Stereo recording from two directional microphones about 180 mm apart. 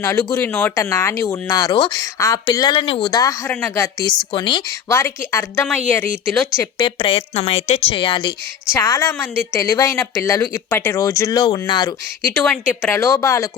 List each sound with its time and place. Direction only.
0.0 s speech: 15° left (ahead or behind)
3.5 s speech: 10° left (ahead or behind)
4.3 s speech: 25° left (ahead or behind)
4.9 s speech: 15° left (ahead or behind)
6.7 s speech: 25° left (ahead or behind)
8.7 s speech: 15° left (ahead or behind)
12.4 s speech: 10° left (ahead or behind)